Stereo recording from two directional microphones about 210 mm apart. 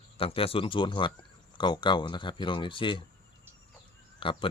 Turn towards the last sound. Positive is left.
turn(degrees=25)  # may be behind; listen again after turning